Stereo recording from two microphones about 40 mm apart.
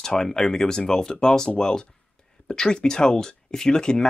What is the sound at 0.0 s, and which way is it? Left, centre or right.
Speech, centre.